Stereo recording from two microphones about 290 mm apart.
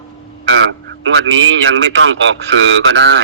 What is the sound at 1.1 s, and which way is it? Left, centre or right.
A man's voice, right.